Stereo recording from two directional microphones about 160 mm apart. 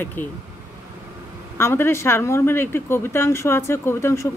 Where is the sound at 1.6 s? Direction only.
15° left (ahead or behind).